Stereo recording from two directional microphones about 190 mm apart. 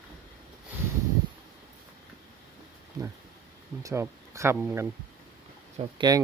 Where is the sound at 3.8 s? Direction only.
15° right (ahead or behind).